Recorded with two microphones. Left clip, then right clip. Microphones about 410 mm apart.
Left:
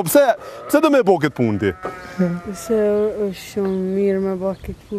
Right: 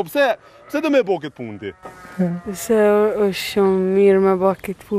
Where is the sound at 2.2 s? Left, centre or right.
Right.